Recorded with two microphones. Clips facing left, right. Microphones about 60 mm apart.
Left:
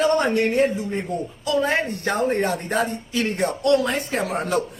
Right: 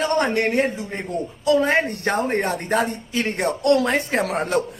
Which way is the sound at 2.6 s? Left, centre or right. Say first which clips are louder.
Right 2 dB; right.